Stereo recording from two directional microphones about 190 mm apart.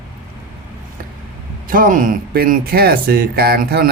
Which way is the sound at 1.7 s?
45° right (ahead or behind).